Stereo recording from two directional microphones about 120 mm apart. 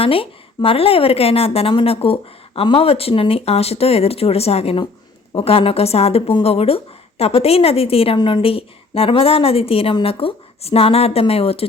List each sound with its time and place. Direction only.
0.0 s a woman's voice: 50° left (ahead or behind)